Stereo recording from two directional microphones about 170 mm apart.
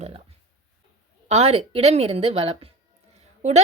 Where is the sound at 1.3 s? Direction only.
40° right (ahead or behind).